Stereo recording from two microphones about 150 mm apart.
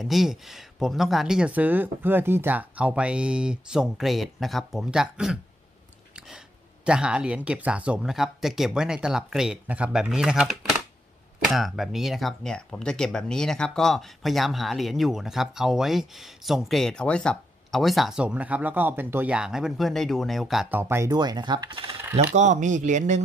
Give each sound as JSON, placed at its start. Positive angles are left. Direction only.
{"t": 0.0, "sound": "speech", "side_deg": 0}
{"t": 6.9, "sound": "speech", "side_deg": -5}
{"t": 20.7, "sound": "speech", "side_deg": -15}
{"t": 22.1, "sound": "speech", "side_deg": -50}